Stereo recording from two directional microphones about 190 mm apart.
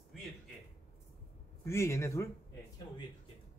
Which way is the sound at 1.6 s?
15° left (ahead or behind).